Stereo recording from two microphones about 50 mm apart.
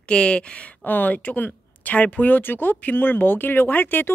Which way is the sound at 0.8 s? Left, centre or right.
Left.